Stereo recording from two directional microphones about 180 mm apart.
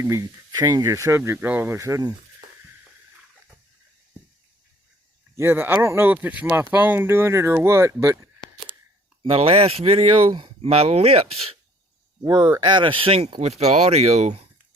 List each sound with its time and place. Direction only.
0.0 s speech: 20° right (ahead or behind)
5.4 s speech: 15° right (ahead or behind)
9.3 s speech: 35° right (ahead or behind)
12.2 s speech: 25° right (ahead or behind)